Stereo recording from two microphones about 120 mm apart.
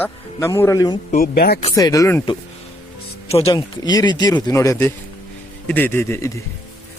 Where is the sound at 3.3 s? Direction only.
55° left (ahead or behind).